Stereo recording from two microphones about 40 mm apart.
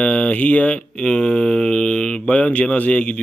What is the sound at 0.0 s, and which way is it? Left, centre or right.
Mantra, left.